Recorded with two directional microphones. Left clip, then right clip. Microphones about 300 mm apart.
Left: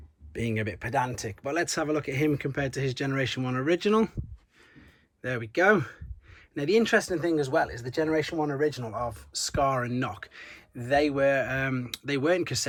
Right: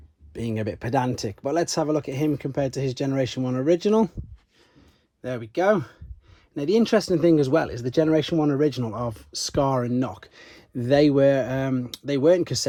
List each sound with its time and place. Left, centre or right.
0.3 s speech: centre
5.2 s speech: centre